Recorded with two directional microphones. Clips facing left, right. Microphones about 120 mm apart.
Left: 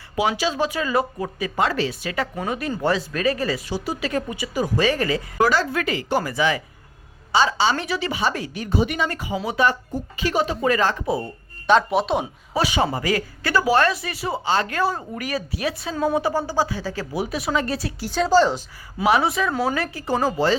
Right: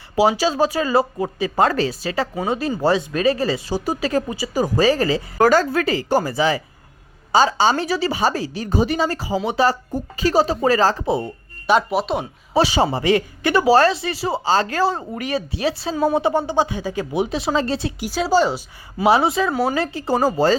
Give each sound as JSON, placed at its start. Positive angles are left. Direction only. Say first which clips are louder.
{"t": 0.2, "sound": "a woman's voice", "louder": "right 5 dB", "side_deg": -35}
{"t": 1.6, "sound": "a woman's voice", "louder": "right 4 dB", "side_deg": -40}
{"t": 3.8, "sound": "a woman's voice", "louder": "right 4 dB", "side_deg": -40}
{"t": 5.4, "sound": "a woman's voice", "louder": "right 5 dB", "side_deg": -45}
{"t": 11.6, "sound": "speech", "louder": "even", "side_deg": -5}
{"t": 12.5, "sound": "speech", "louder": "right 4 dB", "side_deg": -30}
{"t": 18.1, "sound": "speech", "louder": "left 1 dB", "side_deg": -10}
{"t": 19.0, "sound": "speech", "louder": "right 3 dB", "side_deg": -30}
{"t": 19.5, "sound": "speech", "louder": "right 2 dB", "side_deg": 0}
{"t": 19.7, "sound": "speech", "louder": "right 4 dB", "side_deg": -25}
{"t": 20.2, "sound": "a woman's voice", "louder": "right 3 dB", "side_deg": -40}